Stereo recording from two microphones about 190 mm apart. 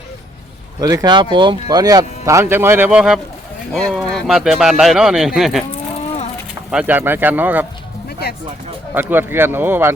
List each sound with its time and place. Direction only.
0.8 s speech: 20° right (ahead or behind); by 5.6 s centre (ahead or behind)
6.7 s speech: 5° right (ahead or behind)
9.0 s speech: 10° right (ahead or behind)